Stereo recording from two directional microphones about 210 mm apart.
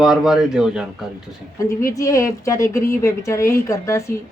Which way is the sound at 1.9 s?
15° left (ahead or behind).